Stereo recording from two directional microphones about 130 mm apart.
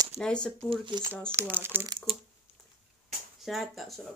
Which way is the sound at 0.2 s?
5° left (ahead or behind).